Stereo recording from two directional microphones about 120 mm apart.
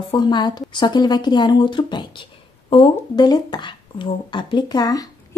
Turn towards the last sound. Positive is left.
turn(degrees=30)  # may be behind; listen again after turning